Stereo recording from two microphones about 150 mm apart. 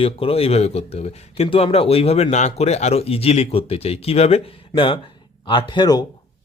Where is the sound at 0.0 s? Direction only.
40° left (ahead or behind).